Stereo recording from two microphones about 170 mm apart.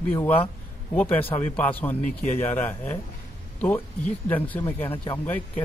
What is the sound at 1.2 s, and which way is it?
Speech, 30° left (ahead or behind).